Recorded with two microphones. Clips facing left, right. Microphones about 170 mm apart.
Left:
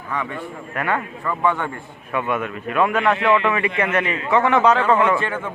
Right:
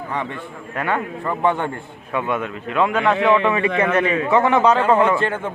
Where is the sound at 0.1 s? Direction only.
25° right (ahead or behind).